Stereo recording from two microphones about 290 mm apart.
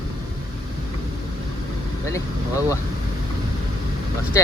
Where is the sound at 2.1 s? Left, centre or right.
Centre.